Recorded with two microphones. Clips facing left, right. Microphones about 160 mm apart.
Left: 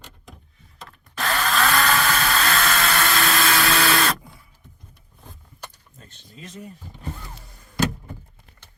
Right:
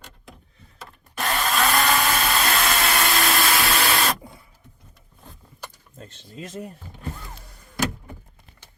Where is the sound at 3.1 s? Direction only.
25° right (ahead or behind).